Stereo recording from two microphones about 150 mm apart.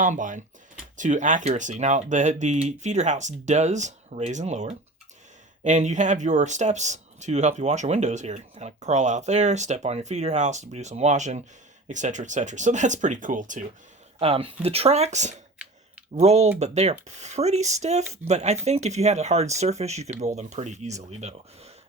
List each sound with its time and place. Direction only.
0.0 s speech: 60° right (ahead or behind)
14.2 s speech: 40° right (ahead or behind)